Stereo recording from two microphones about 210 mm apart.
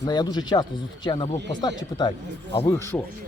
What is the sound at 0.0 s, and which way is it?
A man's voice, 20° left (ahead or behind).